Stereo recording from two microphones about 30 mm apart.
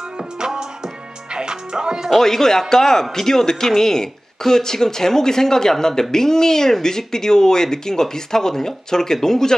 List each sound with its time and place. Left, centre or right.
1.3 s music: right
2.1 s speech: centre